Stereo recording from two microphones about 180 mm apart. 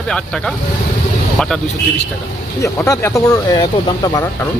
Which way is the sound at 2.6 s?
15° left (ahead or behind).